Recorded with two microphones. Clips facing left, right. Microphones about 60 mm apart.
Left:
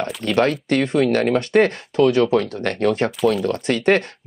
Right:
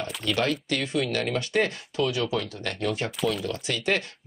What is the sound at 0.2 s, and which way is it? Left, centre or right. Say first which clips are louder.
Speech: left 8 dB; left.